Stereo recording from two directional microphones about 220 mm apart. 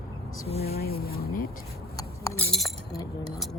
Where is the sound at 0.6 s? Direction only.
45° left (ahead or behind).